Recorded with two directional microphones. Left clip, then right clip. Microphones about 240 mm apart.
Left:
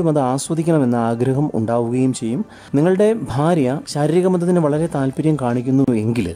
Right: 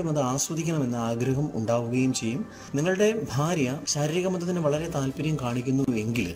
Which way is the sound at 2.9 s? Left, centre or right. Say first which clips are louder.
Left 7 dB; left.